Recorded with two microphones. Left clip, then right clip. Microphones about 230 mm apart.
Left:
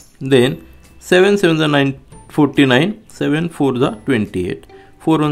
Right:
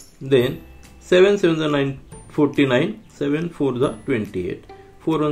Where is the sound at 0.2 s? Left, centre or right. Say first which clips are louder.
Left 5 dB; left.